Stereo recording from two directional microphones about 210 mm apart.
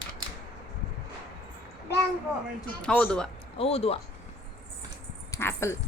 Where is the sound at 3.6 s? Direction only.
30° left (ahead or behind).